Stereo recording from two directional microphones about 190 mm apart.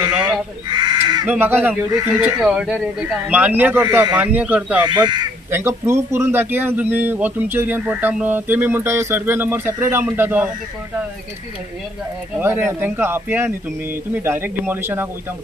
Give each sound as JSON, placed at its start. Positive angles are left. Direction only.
{"t": 1.2, "sound": "a man's voice", "side_deg": -10}
{"t": 4.8, "sound": "a man's voice", "side_deg": -25}
{"t": 12.4, "sound": "a man's voice", "side_deg": -10}